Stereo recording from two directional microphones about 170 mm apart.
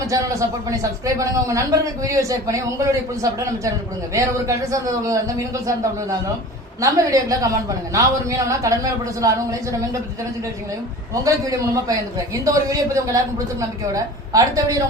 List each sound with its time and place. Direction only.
0.1 s speech: 20° right (ahead or behind)
11.1 s speech: 20° right (ahead or behind)